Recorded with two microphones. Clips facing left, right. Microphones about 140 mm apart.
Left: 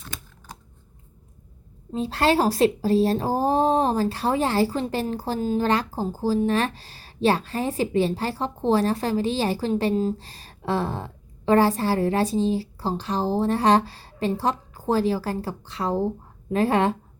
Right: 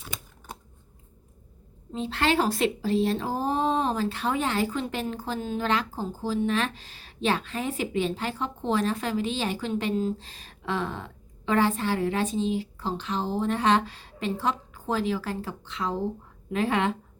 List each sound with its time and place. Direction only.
0.1 s typewriter: 20° right (ahead or behind)
1.9 s speech: 40° left (ahead or behind)